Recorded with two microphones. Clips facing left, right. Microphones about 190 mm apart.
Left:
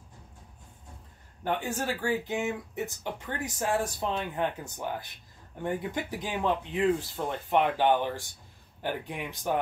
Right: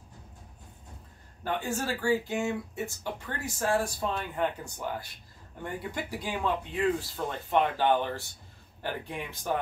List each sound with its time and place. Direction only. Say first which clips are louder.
1.4 s speech: left 1 dB; 20° left (ahead or behind)